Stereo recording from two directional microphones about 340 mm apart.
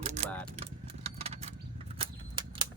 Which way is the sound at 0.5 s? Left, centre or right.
Centre.